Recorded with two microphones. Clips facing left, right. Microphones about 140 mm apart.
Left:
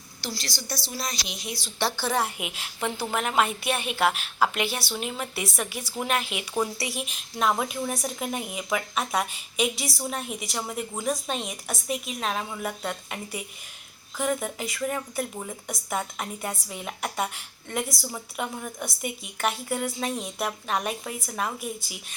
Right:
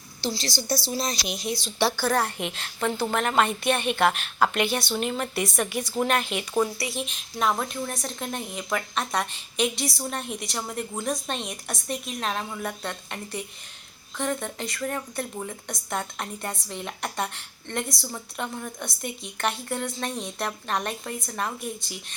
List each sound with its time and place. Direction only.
0.2 s a woman's voice: 25° right (ahead or behind)
2.0 s speech: centre (ahead or behind)
6.6 s speech: 20° left (ahead or behind)
6.9 s speech: 5° left (ahead or behind)